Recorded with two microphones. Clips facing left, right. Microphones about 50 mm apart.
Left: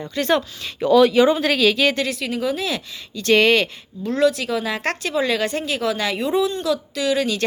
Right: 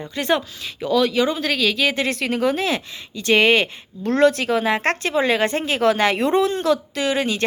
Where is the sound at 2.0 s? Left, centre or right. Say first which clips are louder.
Right 3 dB; right.